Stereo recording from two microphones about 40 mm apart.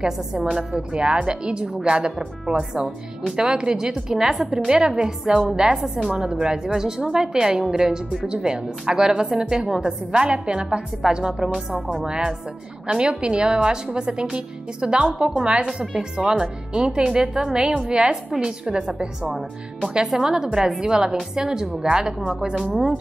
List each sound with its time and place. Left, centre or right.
0.0 s a woman's voice: centre
6.4 s a woman's voice: centre
11.3 s a woman's voice: centre
12.0 s speech: right
20.1 s a woman's voice: centre